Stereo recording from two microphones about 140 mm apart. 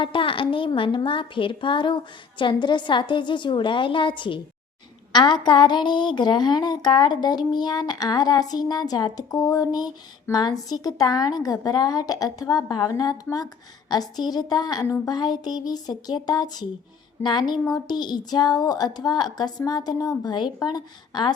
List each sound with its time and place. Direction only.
0.0 s a woman's voice: 40° left (ahead or behind)